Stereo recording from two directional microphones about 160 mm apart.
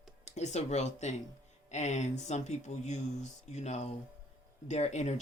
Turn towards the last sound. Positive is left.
turn(degrees=45)  # may be behind; listen again after turning